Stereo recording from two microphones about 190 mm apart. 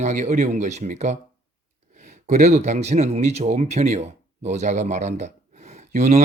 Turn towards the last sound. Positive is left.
turn(degrees=-35)  # may be behind; listen again after turning